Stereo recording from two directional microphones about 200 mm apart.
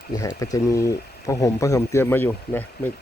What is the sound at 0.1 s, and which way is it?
Speech, 20° left (ahead or behind).